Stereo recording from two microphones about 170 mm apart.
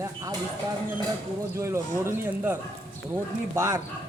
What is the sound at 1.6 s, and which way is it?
A man's voice, 15° right (ahead or behind).